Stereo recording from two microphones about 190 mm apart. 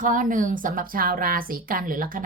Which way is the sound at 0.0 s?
45° right (ahead or behind).